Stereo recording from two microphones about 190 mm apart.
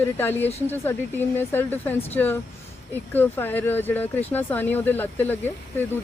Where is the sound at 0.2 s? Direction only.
10° left (ahead or behind).